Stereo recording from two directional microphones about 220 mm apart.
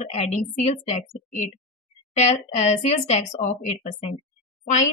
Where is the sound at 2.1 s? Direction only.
30° left (ahead or behind).